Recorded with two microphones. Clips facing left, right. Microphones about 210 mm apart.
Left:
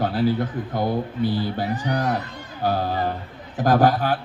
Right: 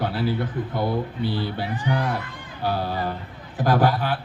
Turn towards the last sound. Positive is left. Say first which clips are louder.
# left 3 dB
turn(degrees=45)  # may be behind; listen again after turning